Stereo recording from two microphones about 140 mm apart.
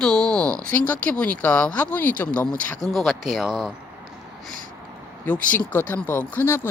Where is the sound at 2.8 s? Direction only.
Centre (ahead or behind).